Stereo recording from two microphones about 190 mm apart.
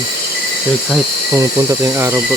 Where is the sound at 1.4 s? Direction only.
15° right (ahead or behind).